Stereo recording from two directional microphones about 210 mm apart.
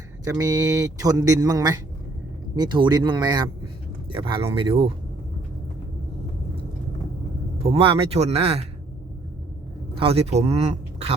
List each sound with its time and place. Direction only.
0.3 s a man's voice: 15° right (ahead or behind)
7.6 s speech: 25° right (ahead or behind)
10.0 s speech: 30° right (ahead or behind)